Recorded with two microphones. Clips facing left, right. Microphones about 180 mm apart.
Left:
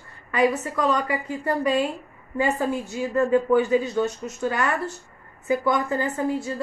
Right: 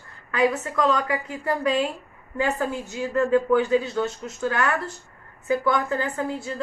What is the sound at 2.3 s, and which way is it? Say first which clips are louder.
A woman's voice: left 2 dB; 15° left (ahead or behind).